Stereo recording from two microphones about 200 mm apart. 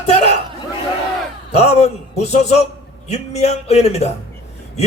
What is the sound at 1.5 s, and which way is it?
A man's voice, 30° left (ahead or behind).